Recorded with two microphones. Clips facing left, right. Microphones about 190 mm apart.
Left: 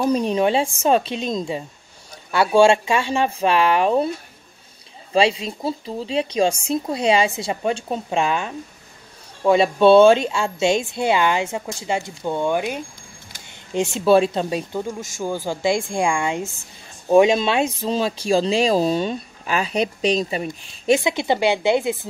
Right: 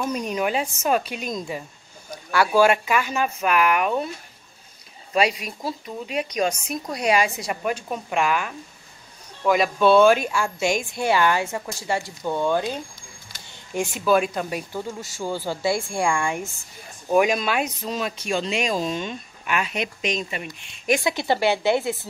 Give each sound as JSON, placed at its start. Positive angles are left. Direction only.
{"t": 0.0, "sound": "speech", "side_deg": 30}
{"t": 5.1, "sound": "speech", "side_deg": 30}
{"t": 13.7, "sound": "speech", "side_deg": 30}